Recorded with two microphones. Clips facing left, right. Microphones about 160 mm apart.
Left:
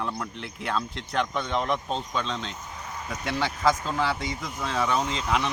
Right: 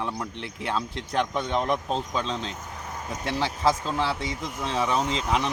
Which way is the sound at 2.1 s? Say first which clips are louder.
Right 1 dB; 35° right (ahead or behind).